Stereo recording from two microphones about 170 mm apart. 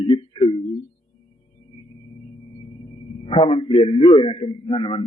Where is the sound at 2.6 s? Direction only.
30° left (ahead or behind).